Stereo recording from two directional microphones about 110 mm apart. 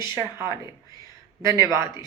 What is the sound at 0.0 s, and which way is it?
Speech, 30° right (ahead or behind).